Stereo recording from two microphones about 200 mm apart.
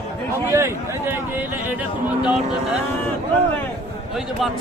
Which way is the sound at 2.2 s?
5° right (ahead or behind).